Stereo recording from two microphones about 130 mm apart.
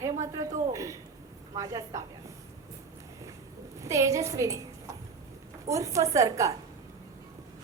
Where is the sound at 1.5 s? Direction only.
25° right (ahead or behind).